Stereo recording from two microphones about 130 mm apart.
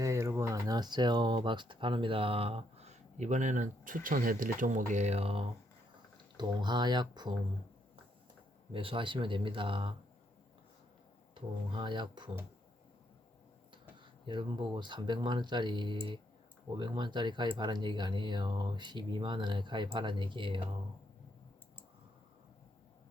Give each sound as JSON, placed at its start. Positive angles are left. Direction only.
{"t": 0.0, "sound": "speech", "side_deg": -25}
{"t": 6.3, "sound": "speech", "side_deg": -35}
{"t": 8.7, "sound": "speech", "side_deg": -40}
{"t": 11.3, "sound": "speech", "side_deg": -35}
{"t": 14.3, "sound": "speech", "side_deg": -35}